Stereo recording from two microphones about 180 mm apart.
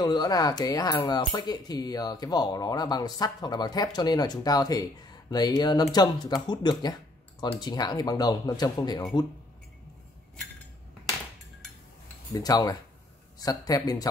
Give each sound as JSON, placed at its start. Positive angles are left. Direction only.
{"t": 0.0, "sound": "speech", "side_deg": 20}
{"t": 12.3, "sound": "speech", "side_deg": 20}